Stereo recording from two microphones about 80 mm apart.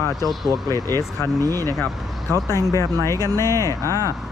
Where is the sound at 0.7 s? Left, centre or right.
Right.